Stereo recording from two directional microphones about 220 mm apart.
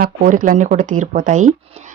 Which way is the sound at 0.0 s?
40° right (ahead or behind).